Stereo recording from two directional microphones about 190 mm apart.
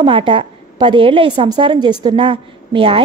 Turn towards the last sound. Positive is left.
turn(degrees=-30)  # may be behind; listen again after turning